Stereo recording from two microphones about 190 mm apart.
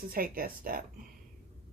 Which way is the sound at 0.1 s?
50° right (ahead or behind).